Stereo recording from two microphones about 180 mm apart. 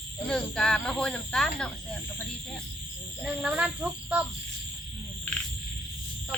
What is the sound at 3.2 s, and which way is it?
Speech, 5° right (ahead or behind).